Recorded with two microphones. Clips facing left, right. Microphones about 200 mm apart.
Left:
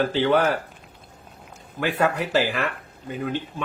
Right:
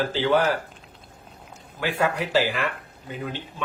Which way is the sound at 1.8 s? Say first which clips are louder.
Left 2 dB; 50° left (ahead or behind).